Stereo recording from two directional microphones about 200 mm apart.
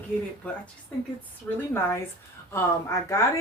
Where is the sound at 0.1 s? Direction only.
5° right (ahead or behind).